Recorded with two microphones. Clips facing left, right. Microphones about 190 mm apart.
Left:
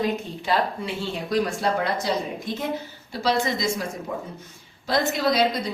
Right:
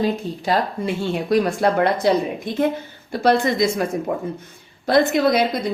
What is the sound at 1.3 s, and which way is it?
A woman's voice, 60° right (ahead or behind).